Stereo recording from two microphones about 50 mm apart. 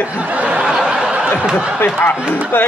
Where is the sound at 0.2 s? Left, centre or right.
Right.